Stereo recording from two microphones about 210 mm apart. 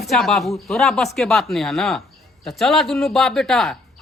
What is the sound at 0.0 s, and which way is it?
Speech, centre (ahead or behind).